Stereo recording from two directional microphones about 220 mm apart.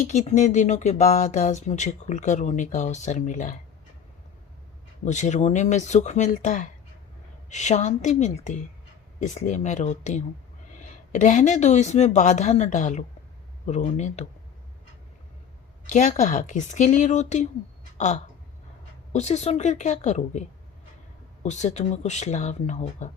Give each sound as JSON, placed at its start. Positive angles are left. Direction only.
{"t": 0.0, "sound": "speech", "side_deg": 30}
{"t": 5.0, "sound": "speech", "side_deg": 35}
{"t": 15.9, "sound": "speech", "side_deg": 35}
{"t": 17.9, "sound": "a sound", "side_deg": 35}
{"t": 19.1, "sound": "speech", "side_deg": 30}